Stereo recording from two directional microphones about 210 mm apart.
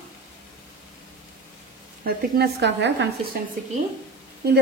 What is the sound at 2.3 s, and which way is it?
Speech, 55° right (ahead or behind).